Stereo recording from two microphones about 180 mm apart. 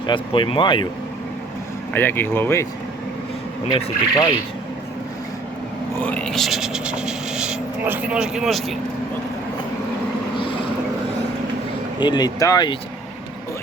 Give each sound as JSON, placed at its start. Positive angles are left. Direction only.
{"t": 0.1, "sound": "speech", "side_deg": 25}
{"t": 1.9, "sound": "speech", "side_deg": 10}
{"t": 3.7, "sound": "speech", "side_deg": 30}
{"t": 6.0, "sound": "speech", "side_deg": 5}
{"t": 10.3, "sound": "boat", "side_deg": 30}
{"t": 11.9, "sound": "speech", "side_deg": 25}